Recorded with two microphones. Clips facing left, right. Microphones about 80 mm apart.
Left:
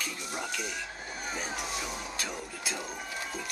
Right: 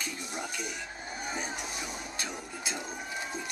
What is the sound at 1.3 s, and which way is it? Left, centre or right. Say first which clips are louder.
Speech: left 2 dB; centre.